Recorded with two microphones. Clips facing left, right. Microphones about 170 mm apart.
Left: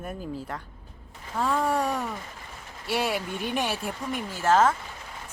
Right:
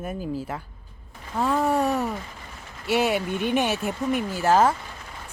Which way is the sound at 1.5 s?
25° right (ahead or behind).